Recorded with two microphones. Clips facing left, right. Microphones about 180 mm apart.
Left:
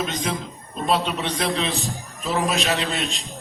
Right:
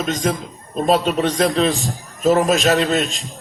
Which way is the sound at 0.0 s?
45° right (ahead or behind).